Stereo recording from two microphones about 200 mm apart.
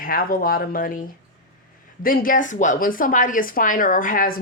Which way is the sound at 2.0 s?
45° left (ahead or behind).